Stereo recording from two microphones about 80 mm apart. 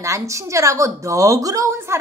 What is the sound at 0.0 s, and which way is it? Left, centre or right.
A woman's voice, right.